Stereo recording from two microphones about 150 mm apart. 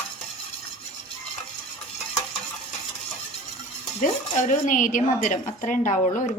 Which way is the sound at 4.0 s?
55° left (ahead or behind).